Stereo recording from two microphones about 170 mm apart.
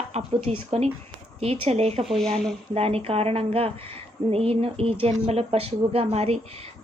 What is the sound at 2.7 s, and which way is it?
A woman's voice, 35° right (ahead or behind).